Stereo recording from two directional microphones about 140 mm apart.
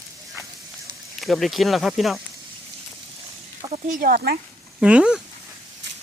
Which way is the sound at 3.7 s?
75° right (ahead or behind).